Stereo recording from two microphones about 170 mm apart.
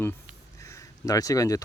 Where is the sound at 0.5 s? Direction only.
20° left (ahead or behind).